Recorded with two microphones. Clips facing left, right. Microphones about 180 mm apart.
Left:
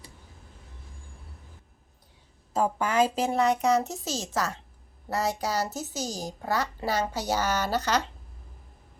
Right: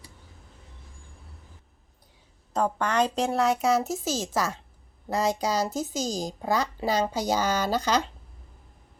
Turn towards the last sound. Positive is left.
turn(degrees=-15)  # may be behind; listen again after turning